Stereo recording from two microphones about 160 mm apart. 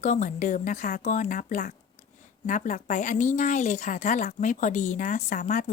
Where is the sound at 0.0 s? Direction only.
50° left (ahead or behind).